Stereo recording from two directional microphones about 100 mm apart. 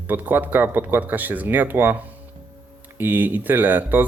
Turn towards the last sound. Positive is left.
turn(degrees=-20)  # may be behind; listen again after turning